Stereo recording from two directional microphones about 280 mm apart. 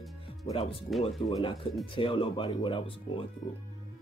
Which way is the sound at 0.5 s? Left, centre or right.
Centre.